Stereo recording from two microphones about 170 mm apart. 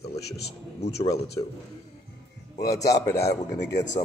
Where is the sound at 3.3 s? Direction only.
90° left.